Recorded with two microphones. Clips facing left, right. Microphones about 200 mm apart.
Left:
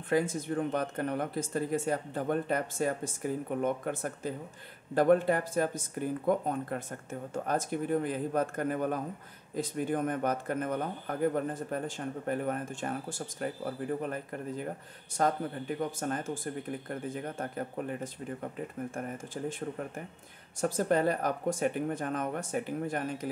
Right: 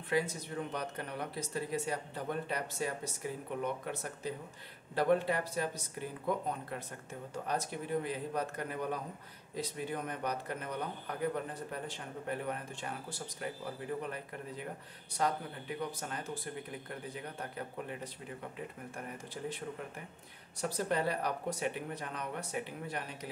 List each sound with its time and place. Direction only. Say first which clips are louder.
0.1 s a man's voice: left 5 dB; 50° left (ahead or behind)
15.8 s a man's voice: left 7 dB; 45° left (ahead or behind)
20.6 s a man's voice: left 6 dB; 45° left (ahead or behind)